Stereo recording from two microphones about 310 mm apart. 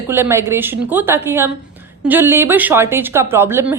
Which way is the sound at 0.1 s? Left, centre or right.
Centre.